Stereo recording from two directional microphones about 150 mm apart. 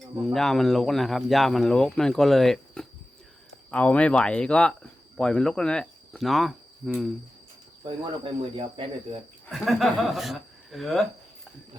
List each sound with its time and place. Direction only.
0.2 s speech: centre (ahead or behind)
7.9 s speech: 35° right (ahead or behind)
9.5 s speech: centre (ahead or behind)